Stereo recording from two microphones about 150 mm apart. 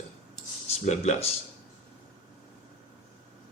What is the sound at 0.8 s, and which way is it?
Speech, 50° left (ahead or behind).